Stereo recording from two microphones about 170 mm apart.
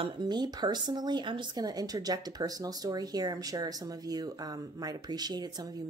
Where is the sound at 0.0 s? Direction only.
25° right (ahead or behind).